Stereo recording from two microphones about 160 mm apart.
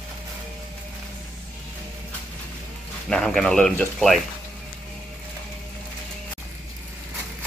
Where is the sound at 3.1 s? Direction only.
5° left (ahead or behind).